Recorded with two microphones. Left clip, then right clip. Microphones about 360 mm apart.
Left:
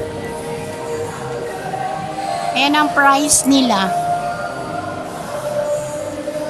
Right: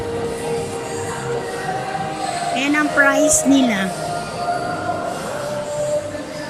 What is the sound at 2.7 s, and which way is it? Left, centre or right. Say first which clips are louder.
Speech: left 1 dB; centre.